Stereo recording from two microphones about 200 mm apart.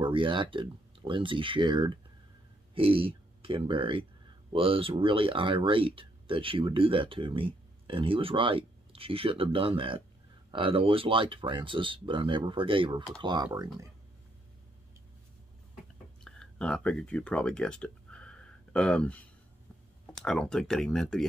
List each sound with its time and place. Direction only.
0.0 s speech: 25° right (ahead or behind)
16.3 s speech: 5° left (ahead or behind)
20.2 s speech: 5° left (ahead or behind)